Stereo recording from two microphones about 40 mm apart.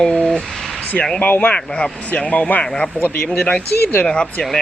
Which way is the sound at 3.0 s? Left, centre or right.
Left.